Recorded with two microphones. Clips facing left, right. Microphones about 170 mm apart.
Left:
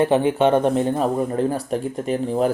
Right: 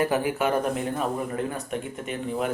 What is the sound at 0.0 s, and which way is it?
Speech, 25° left (ahead or behind).